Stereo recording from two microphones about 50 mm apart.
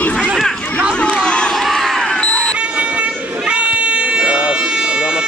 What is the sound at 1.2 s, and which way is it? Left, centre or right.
Crowd, centre.